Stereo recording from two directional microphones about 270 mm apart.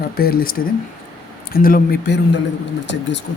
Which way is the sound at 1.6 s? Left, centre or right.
Left.